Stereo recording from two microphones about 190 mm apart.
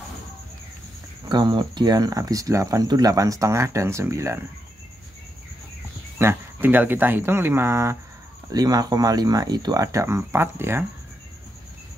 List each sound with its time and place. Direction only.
1.3 s speech: 25° right (ahead or behind)
6.1 s speech: 10° right (ahead or behind)